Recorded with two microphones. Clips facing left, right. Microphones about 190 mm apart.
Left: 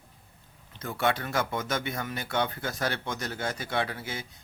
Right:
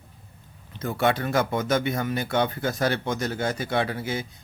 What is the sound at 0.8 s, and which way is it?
Speech, 45° right (ahead or behind).